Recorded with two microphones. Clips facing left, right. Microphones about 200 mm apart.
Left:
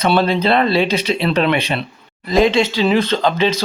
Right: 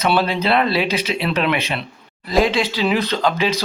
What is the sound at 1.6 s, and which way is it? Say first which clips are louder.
Speech: left 4 dB; 35° left (ahead or behind).